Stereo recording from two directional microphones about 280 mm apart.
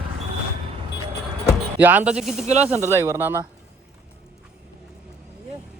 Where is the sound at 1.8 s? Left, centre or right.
Centre.